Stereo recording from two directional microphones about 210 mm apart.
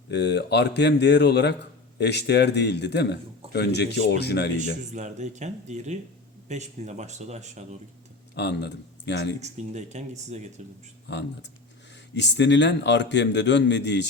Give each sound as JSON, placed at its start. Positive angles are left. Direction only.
{"t": 0.1, "sound": "speech", "side_deg": 55}
{"t": 4.9, "sound": "speech", "side_deg": -35}
{"t": 8.4, "sound": "speech", "side_deg": 55}
{"t": 9.4, "sound": "speech", "side_deg": -35}
{"t": 11.1, "sound": "a man's voice", "side_deg": 55}